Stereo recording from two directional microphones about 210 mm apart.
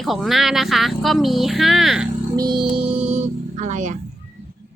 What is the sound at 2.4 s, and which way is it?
Music, 20° right (ahead or behind).